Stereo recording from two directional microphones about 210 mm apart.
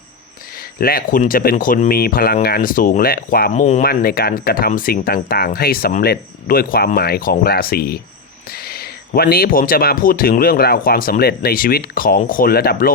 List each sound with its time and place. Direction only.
0.5 s speech: 45° left (ahead or behind)